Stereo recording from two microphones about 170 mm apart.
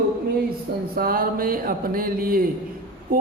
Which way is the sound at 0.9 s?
60° right (ahead or behind).